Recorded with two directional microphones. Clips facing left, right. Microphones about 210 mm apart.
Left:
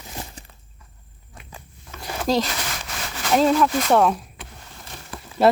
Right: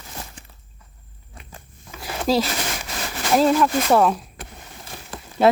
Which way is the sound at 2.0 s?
5° right (ahead or behind).